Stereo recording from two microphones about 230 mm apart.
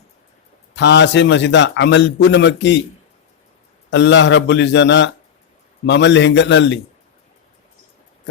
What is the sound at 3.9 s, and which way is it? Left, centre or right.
A man's voice, left.